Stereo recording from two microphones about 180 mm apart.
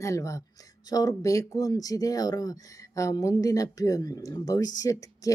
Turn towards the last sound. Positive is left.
turn(degrees=20)  # may be behind; listen again after turning